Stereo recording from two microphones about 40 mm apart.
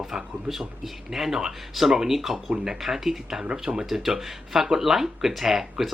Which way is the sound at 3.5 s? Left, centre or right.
Right.